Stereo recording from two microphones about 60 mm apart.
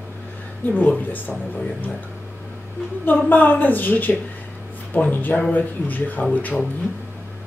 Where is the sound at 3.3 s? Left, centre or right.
Left.